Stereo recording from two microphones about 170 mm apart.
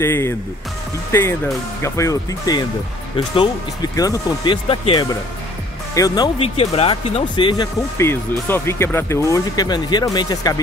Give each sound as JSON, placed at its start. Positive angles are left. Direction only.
{"t": 0.0, "sound": "speech", "side_deg": 15}
{"t": 1.8, "sound": "speech", "side_deg": 15}
{"t": 4.6, "sound": "speech", "side_deg": 30}
{"t": 6.4, "sound": "speech", "side_deg": 35}